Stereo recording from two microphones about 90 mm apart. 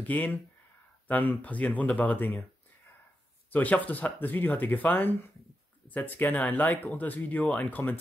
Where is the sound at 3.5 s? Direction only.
20° left (ahead or behind).